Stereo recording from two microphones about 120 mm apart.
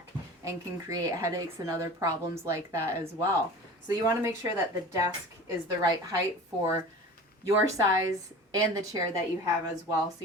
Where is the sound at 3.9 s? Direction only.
25° right (ahead or behind).